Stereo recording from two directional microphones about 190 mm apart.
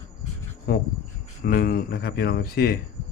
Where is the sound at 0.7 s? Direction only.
50° left (ahead or behind).